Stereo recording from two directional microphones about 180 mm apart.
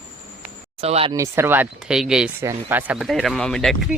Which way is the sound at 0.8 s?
35° right (ahead or behind).